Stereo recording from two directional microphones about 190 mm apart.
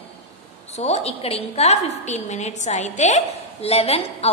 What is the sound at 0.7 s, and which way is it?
A woman's voice, 35° left (ahead or behind).